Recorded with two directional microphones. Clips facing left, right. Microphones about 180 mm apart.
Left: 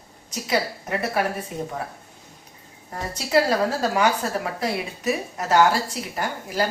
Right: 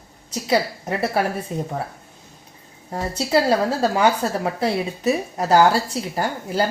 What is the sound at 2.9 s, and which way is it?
A woman's voice, 30° right (ahead or behind).